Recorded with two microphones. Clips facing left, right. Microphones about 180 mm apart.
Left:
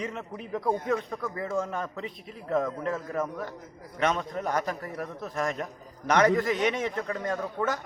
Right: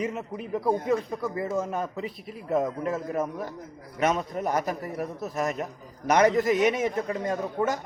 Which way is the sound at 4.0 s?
10° right (ahead or behind).